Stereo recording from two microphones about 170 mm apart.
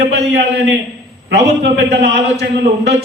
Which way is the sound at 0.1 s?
80° right.